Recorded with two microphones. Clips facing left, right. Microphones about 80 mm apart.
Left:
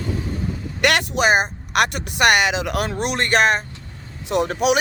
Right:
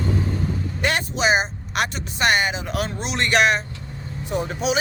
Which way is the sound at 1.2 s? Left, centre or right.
Left.